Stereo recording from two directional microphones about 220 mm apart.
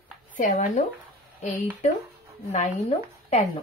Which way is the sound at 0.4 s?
35° left (ahead or behind).